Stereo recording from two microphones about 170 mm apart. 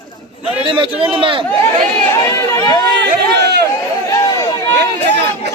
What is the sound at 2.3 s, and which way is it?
Speech, 20° left (ahead or behind).